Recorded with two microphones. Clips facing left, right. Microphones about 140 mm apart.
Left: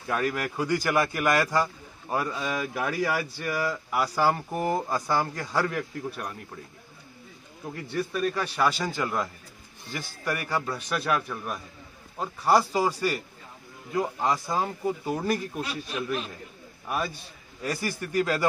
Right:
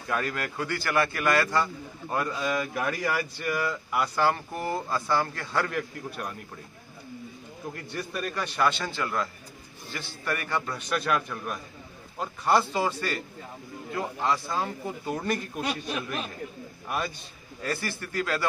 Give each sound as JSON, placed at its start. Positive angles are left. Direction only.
{"t": 0.1, "sound": "a man's voice", "side_deg": 10}
{"t": 5.7, "sound": "a man's voice", "side_deg": 0}
{"t": 7.7, "sound": "a man's voice", "side_deg": 5}
{"t": 17.6, "sound": "a man's voice", "side_deg": 15}